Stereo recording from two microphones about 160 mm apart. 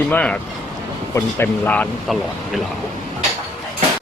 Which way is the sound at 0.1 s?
10° left (ahead or behind).